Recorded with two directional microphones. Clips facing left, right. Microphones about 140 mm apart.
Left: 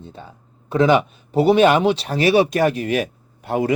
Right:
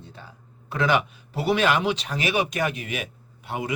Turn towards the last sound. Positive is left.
turn(degrees=45)  # may be behind; listen again after turning